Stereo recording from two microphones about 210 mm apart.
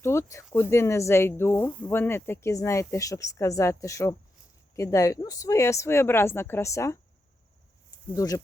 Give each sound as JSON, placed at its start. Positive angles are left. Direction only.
{"t": 0.0, "sound": "a woman's voice", "side_deg": 15}
{"t": 8.1, "sound": "a woman's voice", "side_deg": 15}